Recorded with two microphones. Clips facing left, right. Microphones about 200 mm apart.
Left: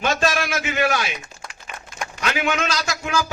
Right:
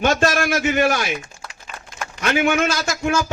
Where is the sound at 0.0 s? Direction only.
45° right (ahead or behind).